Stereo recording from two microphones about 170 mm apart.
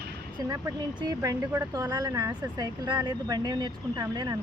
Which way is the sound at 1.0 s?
20° right (ahead or behind).